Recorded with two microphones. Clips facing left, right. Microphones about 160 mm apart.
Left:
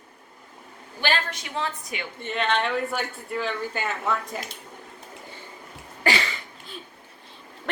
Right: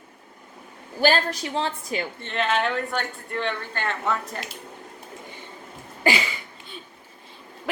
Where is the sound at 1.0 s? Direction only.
35° right (ahead or behind).